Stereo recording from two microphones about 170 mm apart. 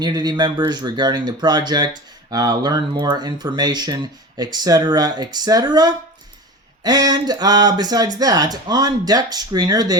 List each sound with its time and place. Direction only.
0.0 s speech: 25° right (ahead or behind)